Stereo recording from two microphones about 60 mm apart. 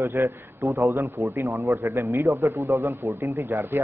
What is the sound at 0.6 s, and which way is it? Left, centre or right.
A man's voice, right.